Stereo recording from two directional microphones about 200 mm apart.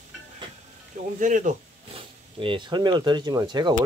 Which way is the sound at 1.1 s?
40° right (ahead or behind).